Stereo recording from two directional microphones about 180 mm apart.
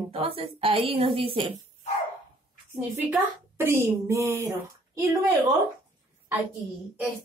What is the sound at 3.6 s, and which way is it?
A woman's voice, 15° right (ahead or behind).